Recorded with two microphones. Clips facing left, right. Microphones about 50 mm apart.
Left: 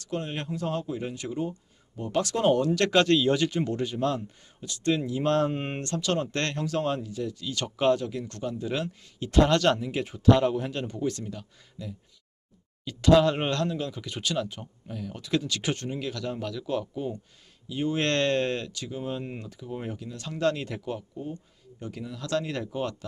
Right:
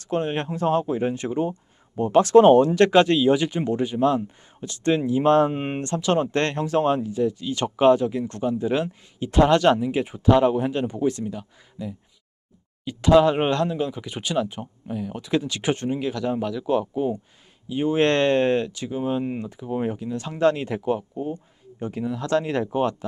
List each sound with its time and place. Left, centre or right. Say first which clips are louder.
0.0 s speech: right 8 dB; right; by 4.2 s centre
4.6 s speech: right 5 dB; right